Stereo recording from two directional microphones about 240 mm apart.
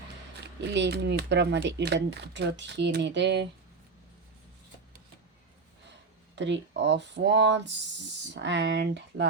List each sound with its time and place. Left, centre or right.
0.6 s speech: right
6.3 s speech: right